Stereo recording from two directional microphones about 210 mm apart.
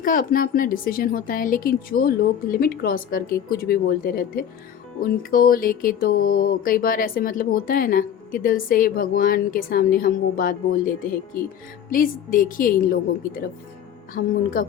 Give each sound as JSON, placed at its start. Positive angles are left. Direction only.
{"t": 0.0, "sound": "a woman's voice", "side_deg": 40}
{"t": 14.1, "sound": "a woman's voice", "side_deg": 40}